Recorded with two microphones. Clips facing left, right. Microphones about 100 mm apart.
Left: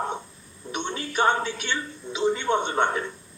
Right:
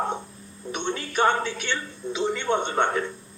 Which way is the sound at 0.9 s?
50° right (ahead or behind).